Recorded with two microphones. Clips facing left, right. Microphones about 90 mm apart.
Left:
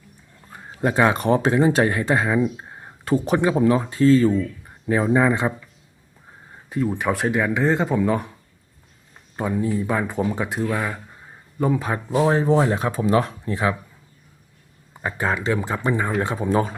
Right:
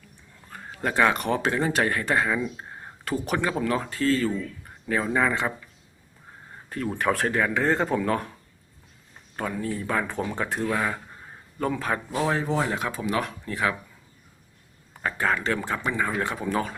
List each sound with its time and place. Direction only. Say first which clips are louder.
0.5 s speech: left 4 dB; 20° left (ahead or behind)
3.0 s speech: left 7 dB; 25° left (ahead or behind)
6.7 s speech: left 3 dB; 10° left (ahead or behind)
9.3 s speech: left 6 dB; 15° left (ahead or behind)
11.6 s speech: left 4 dB; 15° left (ahead or behind)
12.3 s speech: left 7 dB; 35° left (ahead or behind)
15.0 s speech: left 2 dB; 20° left (ahead or behind)